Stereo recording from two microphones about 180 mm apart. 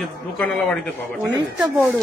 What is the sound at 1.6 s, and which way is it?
Speech, 15° right (ahead or behind).